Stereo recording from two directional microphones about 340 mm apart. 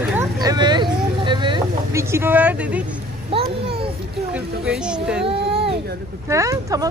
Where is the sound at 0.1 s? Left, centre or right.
Centre.